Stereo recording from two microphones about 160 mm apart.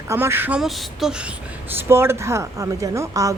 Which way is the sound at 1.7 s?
15° right (ahead or behind).